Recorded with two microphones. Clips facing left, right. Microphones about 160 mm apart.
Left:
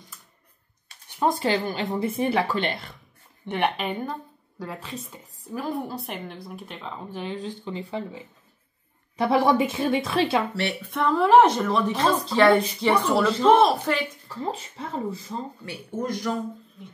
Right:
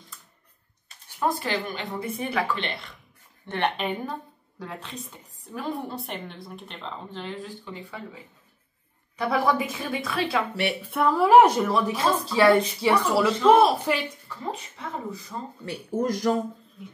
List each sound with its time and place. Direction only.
1.4 s a woman's voice: 30° left (ahead or behind)
2.5 s speech: 40° left (ahead or behind)
3.4 s a woman's voice: 10° left (ahead or behind)
7.6 s a woman's voice: 30° left (ahead or behind)
10.5 s speech: 10° right (ahead or behind)
14.2 s a woman's voice: 30° left (ahead or behind)
15.6 s speech: 35° right (ahead or behind)